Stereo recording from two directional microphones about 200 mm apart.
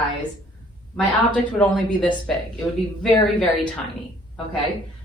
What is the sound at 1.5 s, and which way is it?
Speech, 5° left (ahead or behind).